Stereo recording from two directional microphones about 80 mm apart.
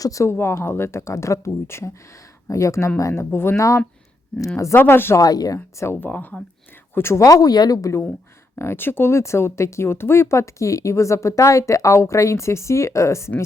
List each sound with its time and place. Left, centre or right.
0.0 s speech: left
5.2 s speech: left
5.7 s speech: left
6.9 s speech: left
7.2 s speech: left